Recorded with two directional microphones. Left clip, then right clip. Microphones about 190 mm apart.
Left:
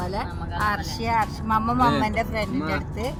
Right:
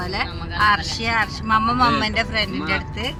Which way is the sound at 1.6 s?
30° right (ahead or behind).